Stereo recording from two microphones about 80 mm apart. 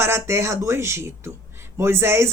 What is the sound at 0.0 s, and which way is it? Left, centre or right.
Speech, right.